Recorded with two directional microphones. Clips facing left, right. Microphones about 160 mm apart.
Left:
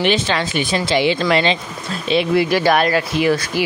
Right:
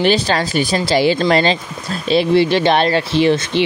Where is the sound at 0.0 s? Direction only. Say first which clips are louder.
Right 3 dB; 40° right (ahead or behind).